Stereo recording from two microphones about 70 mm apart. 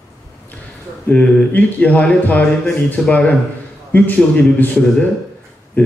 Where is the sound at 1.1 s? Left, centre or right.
Centre.